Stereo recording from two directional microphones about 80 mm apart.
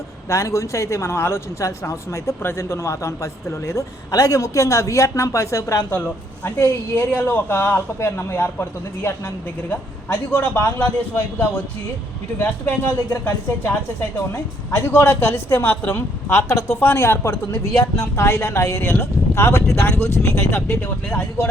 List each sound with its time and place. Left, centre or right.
0.3 s a man's voice: left
6.9 s a man's voice: left
16.5 s a man's voice: left; by 21.2 s centre